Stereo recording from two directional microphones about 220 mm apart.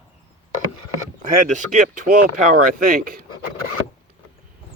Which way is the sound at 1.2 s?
35° right (ahead or behind).